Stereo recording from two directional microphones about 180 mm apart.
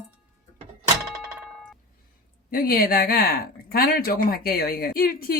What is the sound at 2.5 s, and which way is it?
Speech, 55° left (ahead or behind).